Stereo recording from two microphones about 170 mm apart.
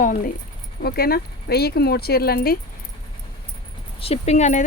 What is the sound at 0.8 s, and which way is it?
Speech, 65° left (ahead or behind).